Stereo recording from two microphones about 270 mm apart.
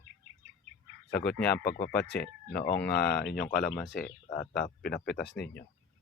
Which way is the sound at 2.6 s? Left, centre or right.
Left.